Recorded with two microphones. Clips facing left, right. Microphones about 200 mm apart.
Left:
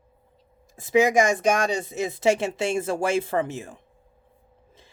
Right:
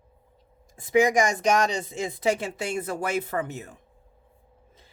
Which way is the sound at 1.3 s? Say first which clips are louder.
Left 1 dB; 55° left (ahead or behind).